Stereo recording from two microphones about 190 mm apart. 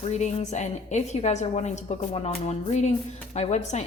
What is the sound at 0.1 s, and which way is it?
A woman's voice, 40° left (ahead or behind).